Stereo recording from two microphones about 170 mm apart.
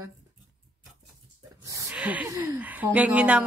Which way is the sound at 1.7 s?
20° right (ahead or behind).